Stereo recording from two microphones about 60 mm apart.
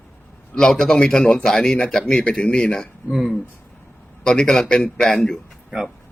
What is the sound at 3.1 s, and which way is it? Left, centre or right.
Speech, centre.